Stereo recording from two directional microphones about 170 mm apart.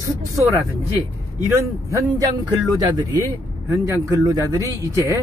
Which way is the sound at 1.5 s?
15° right (ahead or behind).